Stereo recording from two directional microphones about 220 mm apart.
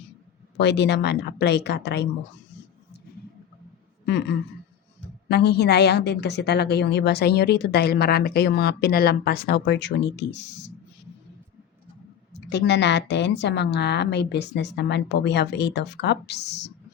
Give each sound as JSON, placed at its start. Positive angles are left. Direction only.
{"t": 0.5, "sound": "a woman's voice", "side_deg": 50}
{"t": 4.0, "sound": "a sound", "side_deg": 50}
{"t": 5.3, "sound": "a woman's voice", "side_deg": 45}
{"t": 12.3, "sound": "a woman's voice", "side_deg": 50}